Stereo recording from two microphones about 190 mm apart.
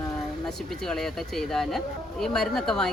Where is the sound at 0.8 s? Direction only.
5° left (ahead or behind).